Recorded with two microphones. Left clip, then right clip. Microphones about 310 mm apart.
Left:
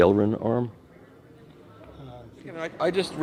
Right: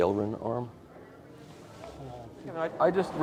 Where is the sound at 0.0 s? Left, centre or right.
Left.